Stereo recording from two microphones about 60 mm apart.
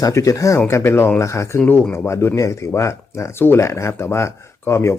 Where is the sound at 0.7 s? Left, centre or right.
Left.